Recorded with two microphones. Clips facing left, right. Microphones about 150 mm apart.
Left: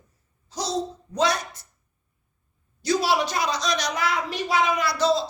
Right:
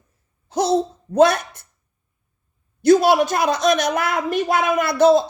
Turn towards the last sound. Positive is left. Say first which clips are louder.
# right 8 dB
turn(degrees=-55)  # may be behind; listen again after turning